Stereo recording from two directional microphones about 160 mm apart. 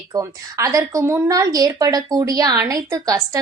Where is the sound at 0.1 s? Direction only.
20° right (ahead or behind).